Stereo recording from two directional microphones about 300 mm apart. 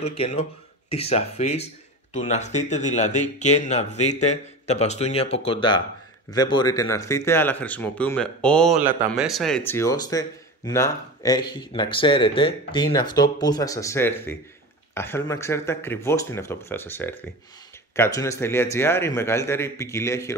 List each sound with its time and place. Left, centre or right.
0.0 s speech: centre